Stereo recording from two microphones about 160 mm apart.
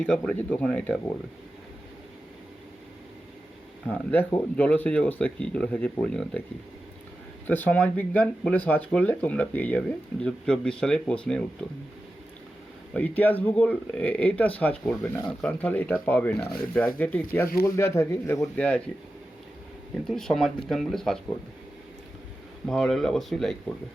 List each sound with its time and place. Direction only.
0.0 s speech: 10° left (ahead or behind)
3.8 s speech: 10° left (ahead or behind)
7.4 s speech: 10° left (ahead or behind)
12.9 s speech: 10° left (ahead or behind)
19.9 s speech: centre (ahead or behind)
22.6 s speech: 5° left (ahead or behind)